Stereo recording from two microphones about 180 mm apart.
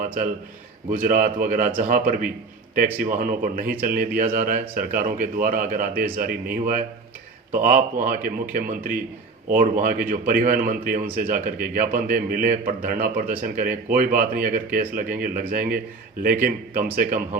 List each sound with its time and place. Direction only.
0.9 s a man's voice: 50° right (ahead or behind)
8.0 s a man's voice: 50° right (ahead or behind)